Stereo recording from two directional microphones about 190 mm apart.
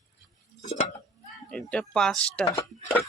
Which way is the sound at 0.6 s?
35° left (ahead or behind).